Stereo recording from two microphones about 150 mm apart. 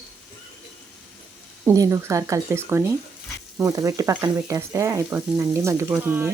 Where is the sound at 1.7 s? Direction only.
20° right (ahead or behind).